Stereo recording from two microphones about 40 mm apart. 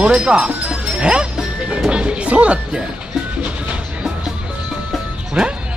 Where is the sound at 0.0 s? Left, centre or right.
Right.